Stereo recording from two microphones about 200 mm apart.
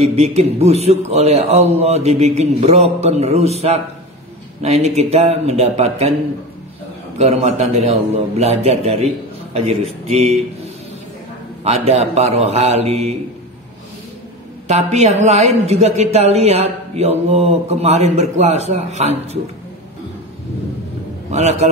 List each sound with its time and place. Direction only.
0.0 s a man's voice: 30° right (ahead or behind)
7.2 s a man's voice: 35° right (ahead or behind)
11.6 s a man's voice: 30° right (ahead or behind)
14.7 s a man's voice: 35° right (ahead or behind)
21.3 s a man's voice: 35° right (ahead or behind)